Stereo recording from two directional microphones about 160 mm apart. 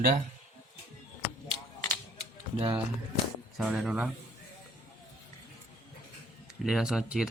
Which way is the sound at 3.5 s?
5° right (ahead or behind).